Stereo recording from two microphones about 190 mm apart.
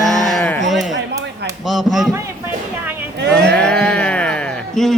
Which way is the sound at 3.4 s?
5° left (ahead or behind).